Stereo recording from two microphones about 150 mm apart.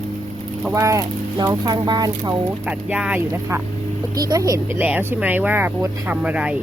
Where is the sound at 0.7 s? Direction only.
20° right (ahead or behind).